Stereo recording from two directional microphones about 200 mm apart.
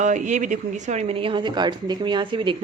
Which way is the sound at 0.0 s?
40° right (ahead or behind).